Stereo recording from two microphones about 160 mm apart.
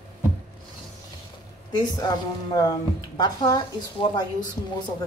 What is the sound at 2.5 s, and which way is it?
A woman's voice, 25° left (ahead or behind).